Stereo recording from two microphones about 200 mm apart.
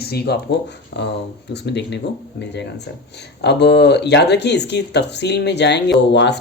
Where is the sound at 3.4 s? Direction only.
55° left (ahead or behind).